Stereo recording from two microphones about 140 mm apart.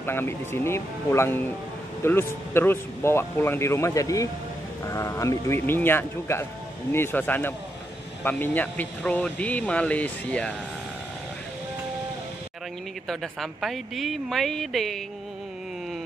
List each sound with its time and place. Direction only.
0.0 s a man's voice: 15° left (ahead or behind)
13.1 s speech: centre (ahead or behind)